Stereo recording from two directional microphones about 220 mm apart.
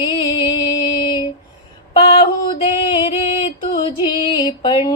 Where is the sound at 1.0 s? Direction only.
20° left (ahead or behind).